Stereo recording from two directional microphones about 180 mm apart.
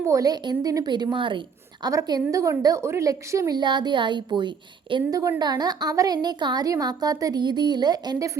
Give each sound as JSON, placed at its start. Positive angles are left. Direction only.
{"t": 0.0, "sound": "a woman's voice", "side_deg": -20}